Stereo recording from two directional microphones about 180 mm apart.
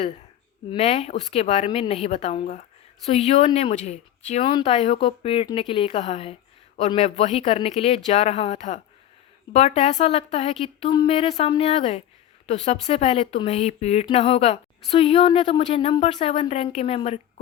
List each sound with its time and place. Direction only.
0.8 s speech: 35° left (ahead or behind)